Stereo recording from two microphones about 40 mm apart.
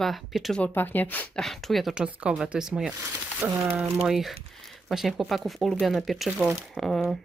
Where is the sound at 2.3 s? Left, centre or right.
Right.